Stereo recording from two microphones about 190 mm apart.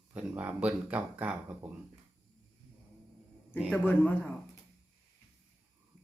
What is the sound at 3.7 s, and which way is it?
Speech, 10° left (ahead or behind).